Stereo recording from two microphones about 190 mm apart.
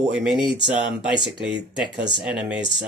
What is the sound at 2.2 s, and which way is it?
Speech, 5° right (ahead or behind).